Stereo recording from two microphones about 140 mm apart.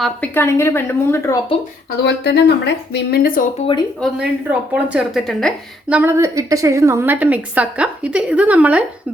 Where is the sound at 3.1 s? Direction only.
90° left.